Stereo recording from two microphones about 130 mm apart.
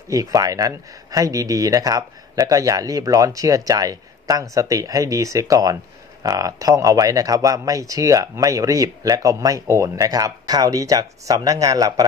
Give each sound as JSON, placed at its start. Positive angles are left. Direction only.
{"t": 0.1, "sound": "speech", "side_deg": -25}